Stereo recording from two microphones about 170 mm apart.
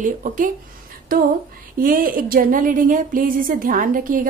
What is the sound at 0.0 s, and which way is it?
Speech, 50° right (ahead or behind).